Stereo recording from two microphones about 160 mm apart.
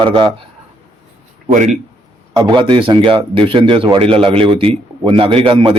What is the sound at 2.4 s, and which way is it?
A man's voice, 30° right (ahead or behind).